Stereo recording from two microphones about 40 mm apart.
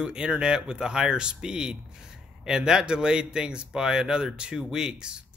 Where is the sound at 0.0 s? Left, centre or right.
Right.